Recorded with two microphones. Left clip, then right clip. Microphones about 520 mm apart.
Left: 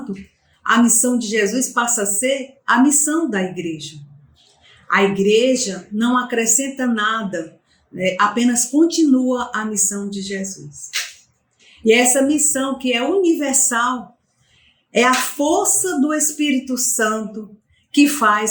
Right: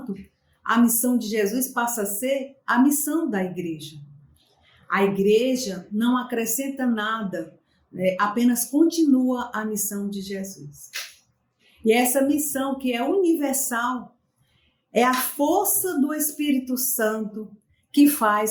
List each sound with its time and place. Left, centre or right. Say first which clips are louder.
0.6 s a woman's voice: left 6 dB; right
4.9 s a woman's voice: left 5 dB; right
11.8 s a woman's voice: left 6 dB; right
14.9 s a woman's voice: left 5 dB; right